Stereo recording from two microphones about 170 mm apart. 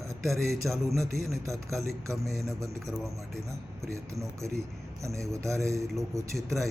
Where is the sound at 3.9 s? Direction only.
20° right (ahead or behind).